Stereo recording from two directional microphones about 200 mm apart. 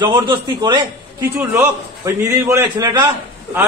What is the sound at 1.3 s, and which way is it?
A man's voice, 10° right (ahead or behind).